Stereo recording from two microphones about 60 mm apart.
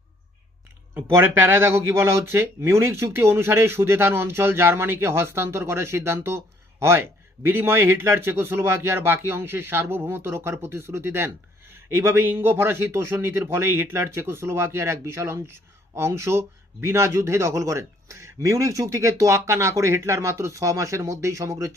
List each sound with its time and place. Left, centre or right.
0.9 s speech: right